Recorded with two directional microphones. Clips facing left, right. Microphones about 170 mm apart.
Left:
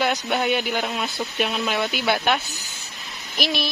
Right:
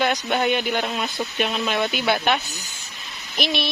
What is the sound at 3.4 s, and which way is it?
Speech, centre (ahead or behind).